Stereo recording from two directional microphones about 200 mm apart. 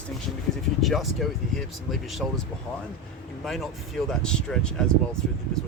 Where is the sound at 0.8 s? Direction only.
Centre (ahead or behind).